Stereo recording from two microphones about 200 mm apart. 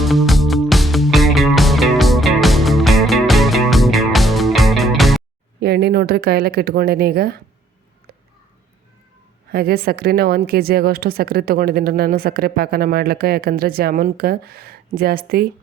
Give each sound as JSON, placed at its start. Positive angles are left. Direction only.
{"t": 0.0, "sound": "music", "side_deg": 0}
{"t": 5.5, "sound": "speech", "side_deg": -55}
{"t": 9.5, "sound": "a woman's voice", "side_deg": -50}